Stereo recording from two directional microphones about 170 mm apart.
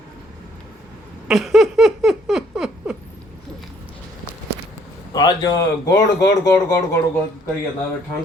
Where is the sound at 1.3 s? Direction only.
Centre (ahead or behind).